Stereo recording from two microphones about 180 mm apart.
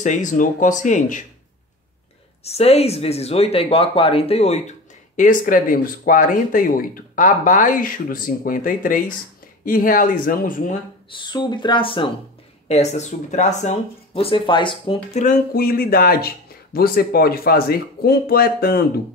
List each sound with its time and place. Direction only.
0.0 s speech: 45° left (ahead or behind)
2.4 s speech: 35° left (ahead or behind); by 10.8 s 50° left (ahead or behind)
11.1 s speech: 25° left (ahead or behind)
15.2 s speech: 40° left (ahead or behind)
15.5 s speech: 55° left (ahead or behind)